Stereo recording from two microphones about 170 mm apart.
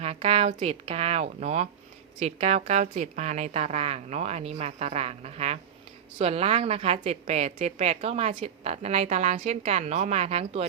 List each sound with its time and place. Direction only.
0.0 s a woman's voice: 35° right (ahead or behind)